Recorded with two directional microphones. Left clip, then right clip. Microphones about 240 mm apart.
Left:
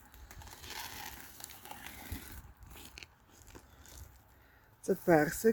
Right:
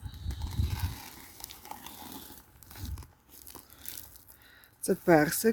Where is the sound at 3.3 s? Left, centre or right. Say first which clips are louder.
Right 4 dB; right.